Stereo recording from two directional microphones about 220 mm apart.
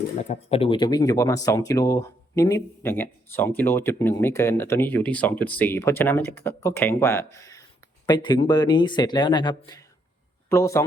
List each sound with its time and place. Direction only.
0.3 s speech: 25° left (ahead or behind)